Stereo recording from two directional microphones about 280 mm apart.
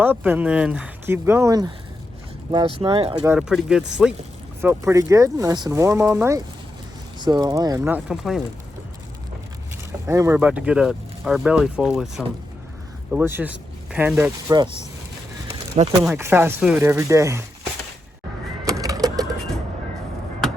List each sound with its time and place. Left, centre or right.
0.0 s speech: centre
3.3 s speech: centre
10.1 s speech: centre
16.0 s speech: centre
18.6 s bird: centre